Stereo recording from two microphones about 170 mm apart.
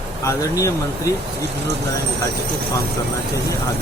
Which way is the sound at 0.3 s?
20° left (ahead or behind).